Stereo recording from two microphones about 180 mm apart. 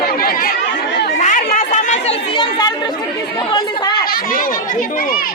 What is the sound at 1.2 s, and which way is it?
Chatter, 50° left (ahead or behind).